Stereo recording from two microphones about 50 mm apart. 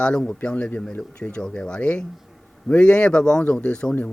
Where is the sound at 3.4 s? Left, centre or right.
Left.